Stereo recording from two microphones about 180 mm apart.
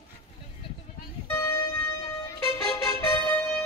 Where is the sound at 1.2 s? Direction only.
15° left (ahead or behind).